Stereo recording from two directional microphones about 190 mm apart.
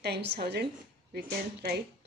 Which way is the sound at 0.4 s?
60° right (ahead or behind).